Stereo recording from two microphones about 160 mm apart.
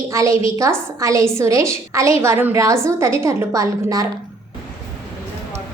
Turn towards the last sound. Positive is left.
turn(degrees=-20)  # may be behind; listen again after turning